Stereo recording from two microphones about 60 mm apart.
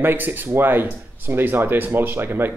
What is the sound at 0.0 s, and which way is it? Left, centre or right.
Speech, right.